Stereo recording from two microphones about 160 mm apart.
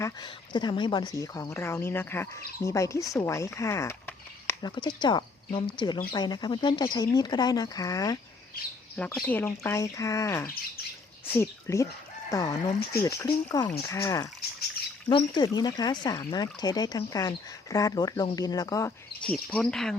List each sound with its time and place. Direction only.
0.0 s speech: 25° left (ahead or behind)
4.6 s speech: 25° left (ahead or behind)
9.2 s speech: 15° left (ahead or behind)
19.2 s speech: 5° left (ahead or behind)